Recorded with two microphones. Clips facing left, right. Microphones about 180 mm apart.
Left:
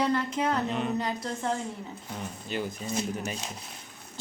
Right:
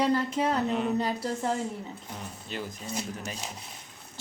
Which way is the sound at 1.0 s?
30° right (ahead or behind).